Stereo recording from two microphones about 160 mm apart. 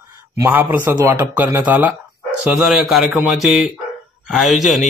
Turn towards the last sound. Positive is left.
turn(degrees=0)  # may be behind; listen again after turning